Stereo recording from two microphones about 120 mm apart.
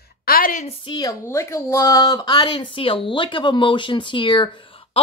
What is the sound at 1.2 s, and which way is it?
Speech, 20° left (ahead or behind).